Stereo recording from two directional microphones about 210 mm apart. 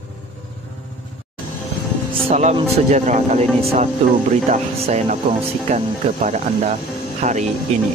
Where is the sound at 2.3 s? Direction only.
30° right (ahead or behind).